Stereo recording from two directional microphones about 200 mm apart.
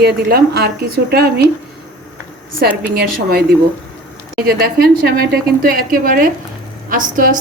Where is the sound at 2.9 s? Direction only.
50° right (ahead or behind).